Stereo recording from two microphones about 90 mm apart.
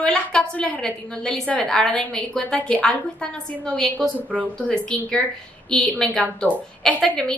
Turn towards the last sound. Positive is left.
turn(degrees=5)  # may be behind; listen again after turning